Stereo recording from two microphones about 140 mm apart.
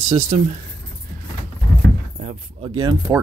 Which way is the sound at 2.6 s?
30° right (ahead or behind).